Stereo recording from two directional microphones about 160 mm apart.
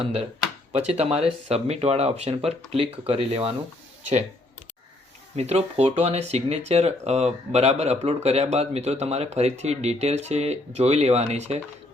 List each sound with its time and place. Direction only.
0.0 s speech: 40° right (ahead or behind)
5.4 s speech: 40° right (ahead or behind)